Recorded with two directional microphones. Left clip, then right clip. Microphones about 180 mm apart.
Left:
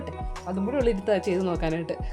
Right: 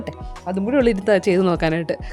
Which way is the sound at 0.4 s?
45° right (ahead or behind).